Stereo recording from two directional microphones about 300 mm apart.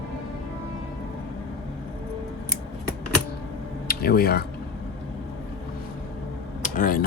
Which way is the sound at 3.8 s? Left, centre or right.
Left.